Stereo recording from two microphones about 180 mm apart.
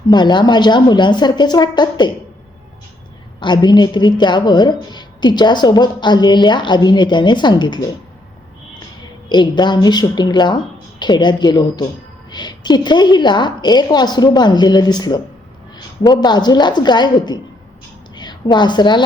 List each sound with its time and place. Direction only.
0.1 s a woman's voice: 25° left (ahead or behind)
3.4 s a woman's voice: 25° left (ahead or behind)
9.3 s a woman's voice: 25° left (ahead or behind)